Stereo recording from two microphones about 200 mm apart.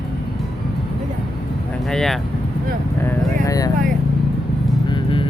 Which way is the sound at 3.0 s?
15° left (ahead or behind).